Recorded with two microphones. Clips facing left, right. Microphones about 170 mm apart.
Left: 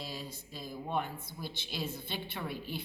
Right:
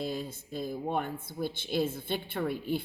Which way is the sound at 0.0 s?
50° right (ahead or behind).